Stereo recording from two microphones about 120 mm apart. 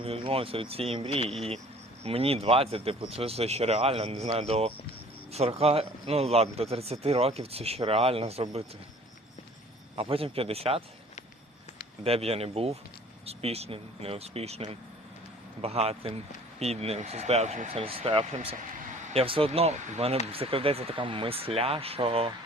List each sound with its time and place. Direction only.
0.0 s speech: 50° right (ahead or behind)
9.9 s speech: 50° right (ahead or behind)
12.0 s speech: 55° right (ahead or behind)